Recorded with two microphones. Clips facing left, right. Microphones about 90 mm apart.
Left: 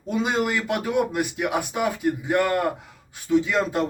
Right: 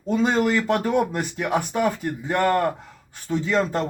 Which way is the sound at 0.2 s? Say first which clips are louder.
Right 3 dB; 10° left (ahead or behind).